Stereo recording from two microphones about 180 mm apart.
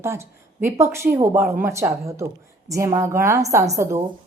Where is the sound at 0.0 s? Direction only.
15° right (ahead or behind).